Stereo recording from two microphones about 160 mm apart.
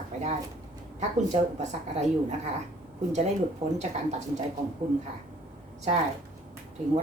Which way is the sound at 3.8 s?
45° right (ahead or behind).